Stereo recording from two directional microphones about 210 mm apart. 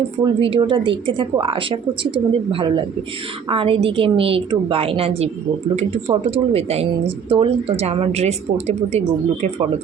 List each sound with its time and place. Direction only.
0.3 s a woman's voice: 25° right (ahead or behind)